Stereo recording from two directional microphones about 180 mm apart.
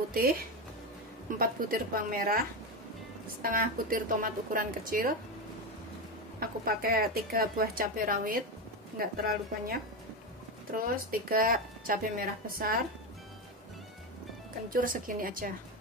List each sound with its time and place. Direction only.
0.1 s speech: 55° right (ahead or behind)
1.4 s speech: 55° right (ahead or behind)
3.4 s speech: 50° right (ahead or behind)
6.4 s speech: 55° right (ahead or behind)
10.8 s speech: 55° right (ahead or behind)
14.8 s speech: 50° right (ahead or behind)